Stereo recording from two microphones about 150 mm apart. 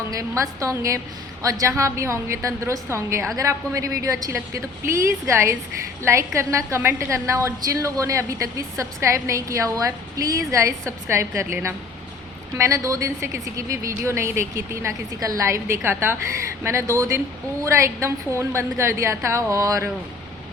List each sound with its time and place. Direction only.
0.1 s a woman's voice: 20° right (ahead or behind)